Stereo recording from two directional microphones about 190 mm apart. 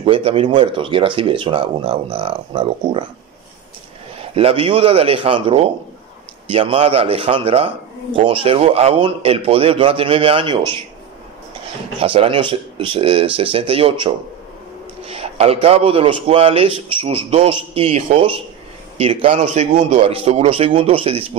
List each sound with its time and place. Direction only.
0.0 s a man's voice: 30° right (ahead or behind)
4.4 s a man's voice: 30° right (ahead or behind)
12.0 s a man's voice: 30° right (ahead or behind)